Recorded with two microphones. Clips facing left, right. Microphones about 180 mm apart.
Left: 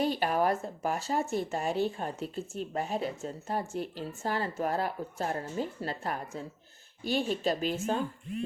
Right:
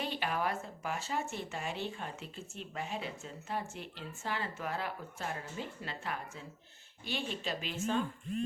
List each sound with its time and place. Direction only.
0.0 s a woman's voice: 40° left (ahead or behind)